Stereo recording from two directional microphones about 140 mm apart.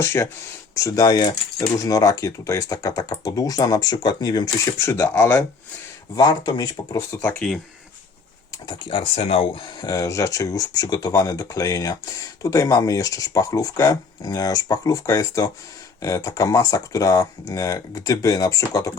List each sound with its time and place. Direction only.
0.0 s speech: 20° left (ahead or behind)
4.9 s speech: 20° left (ahead or behind)
6.1 s speech: 30° left (ahead or behind); by 7.6 s 5° left (ahead or behind)
8.6 s speech: 40° left (ahead or behind)
9.8 s speech: 25° left (ahead or behind)